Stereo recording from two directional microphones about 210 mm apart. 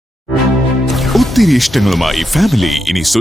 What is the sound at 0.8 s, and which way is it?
Speech, centre (ahead or behind).